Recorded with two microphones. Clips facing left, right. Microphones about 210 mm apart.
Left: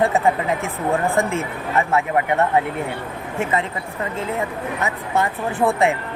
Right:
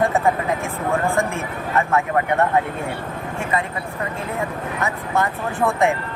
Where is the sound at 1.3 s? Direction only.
20° left (ahead or behind).